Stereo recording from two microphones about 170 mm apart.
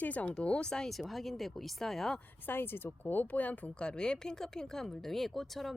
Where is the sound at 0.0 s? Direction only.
10° left (ahead or behind).